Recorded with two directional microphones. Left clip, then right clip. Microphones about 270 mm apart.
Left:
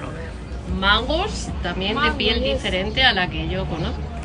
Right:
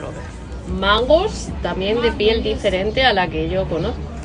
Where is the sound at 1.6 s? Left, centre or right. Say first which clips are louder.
Right 3 dB; centre.